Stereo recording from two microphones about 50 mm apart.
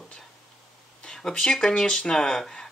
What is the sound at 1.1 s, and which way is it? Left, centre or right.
Speech, centre.